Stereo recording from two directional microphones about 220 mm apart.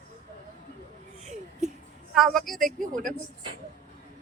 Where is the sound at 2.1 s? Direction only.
Centre (ahead or behind).